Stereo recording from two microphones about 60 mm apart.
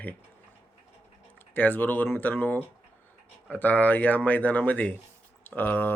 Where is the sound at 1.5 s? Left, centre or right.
Left.